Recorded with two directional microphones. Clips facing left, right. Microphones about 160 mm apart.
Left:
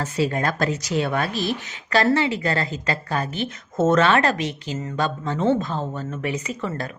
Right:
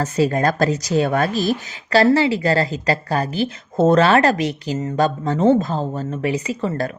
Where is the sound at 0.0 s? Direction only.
40° right (ahead or behind).